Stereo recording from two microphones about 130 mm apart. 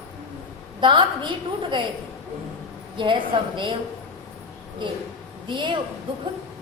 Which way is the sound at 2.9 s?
40° right (ahead or behind).